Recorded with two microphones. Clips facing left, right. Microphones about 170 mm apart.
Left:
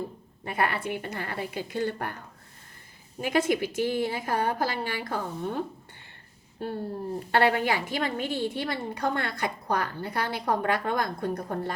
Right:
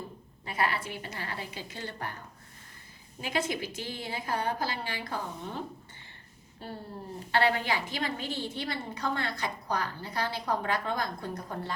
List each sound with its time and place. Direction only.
0.4 s a woman's voice: 55° left (ahead or behind)
3.2 s a woman's voice: 50° left (ahead or behind)
7.3 s a woman's voice: 55° left (ahead or behind)